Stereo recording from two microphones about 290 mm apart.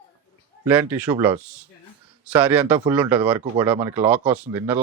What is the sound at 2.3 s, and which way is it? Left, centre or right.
Speech, centre.